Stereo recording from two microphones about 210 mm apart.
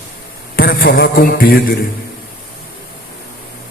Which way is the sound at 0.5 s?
45° left (ahead or behind).